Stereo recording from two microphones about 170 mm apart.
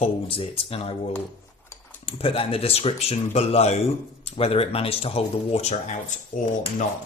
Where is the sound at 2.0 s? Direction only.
30° left (ahead or behind).